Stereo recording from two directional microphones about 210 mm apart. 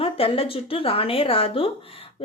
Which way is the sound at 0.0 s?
25° left (ahead or behind).